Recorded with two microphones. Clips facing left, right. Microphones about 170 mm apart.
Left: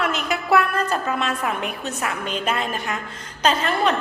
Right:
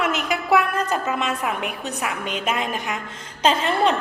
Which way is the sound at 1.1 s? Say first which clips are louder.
Even; 15° right (ahead or behind).